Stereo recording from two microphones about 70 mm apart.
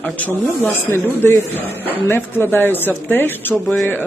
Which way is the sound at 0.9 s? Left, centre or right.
Left.